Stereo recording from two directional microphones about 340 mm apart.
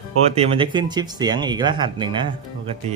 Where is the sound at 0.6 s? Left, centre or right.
Centre.